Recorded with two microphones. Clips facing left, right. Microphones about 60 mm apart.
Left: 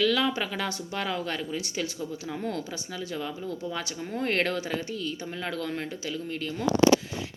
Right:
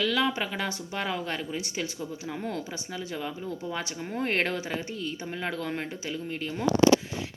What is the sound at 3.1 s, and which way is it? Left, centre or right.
Speech, centre.